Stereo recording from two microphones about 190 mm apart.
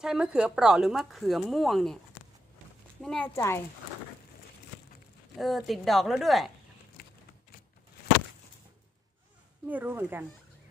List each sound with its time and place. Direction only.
0.0 s a woman's voice: 5° right (ahead or behind)
3.0 s speech: centre (ahead or behind)
3.3 s speech: 15° left (ahead or behind)
5.4 s a woman's voice: centre (ahead or behind)
7.0 s a sound: 55° left (ahead or behind)
9.7 s speech: 10° right (ahead or behind)